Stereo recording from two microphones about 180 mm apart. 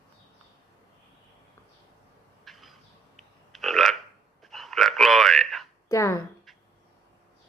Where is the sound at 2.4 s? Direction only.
Centre (ahead or behind).